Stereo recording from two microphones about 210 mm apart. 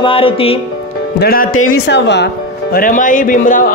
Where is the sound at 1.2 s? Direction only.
45° left (ahead or behind).